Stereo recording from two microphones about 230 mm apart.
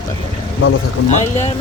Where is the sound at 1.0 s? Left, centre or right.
Left.